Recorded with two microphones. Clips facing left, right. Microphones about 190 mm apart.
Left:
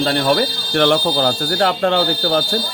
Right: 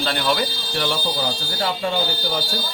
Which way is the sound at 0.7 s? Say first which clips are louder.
Left 12 dB; 65° left (ahead or behind).